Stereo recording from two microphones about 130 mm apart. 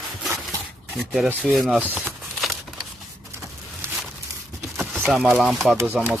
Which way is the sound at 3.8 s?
20° right (ahead or behind).